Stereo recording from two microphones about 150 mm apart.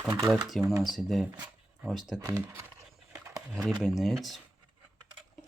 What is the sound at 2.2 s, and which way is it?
Speech, 20° right (ahead or behind).